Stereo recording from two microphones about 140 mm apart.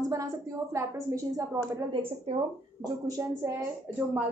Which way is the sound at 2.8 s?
25° right (ahead or behind).